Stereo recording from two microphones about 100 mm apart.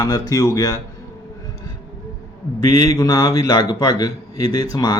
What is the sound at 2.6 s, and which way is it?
A man's voice, 40° left (ahead or behind).